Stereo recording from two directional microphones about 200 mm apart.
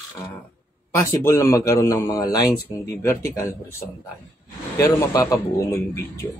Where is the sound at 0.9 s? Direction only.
15° left (ahead or behind).